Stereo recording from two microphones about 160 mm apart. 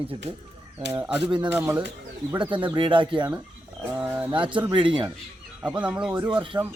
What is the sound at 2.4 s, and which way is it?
Speech, 30° right (ahead or behind).